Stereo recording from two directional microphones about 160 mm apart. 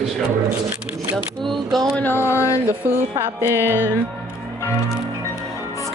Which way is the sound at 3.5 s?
15° right (ahead or behind).